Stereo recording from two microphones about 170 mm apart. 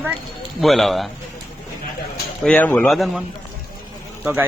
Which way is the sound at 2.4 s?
10° left (ahead or behind).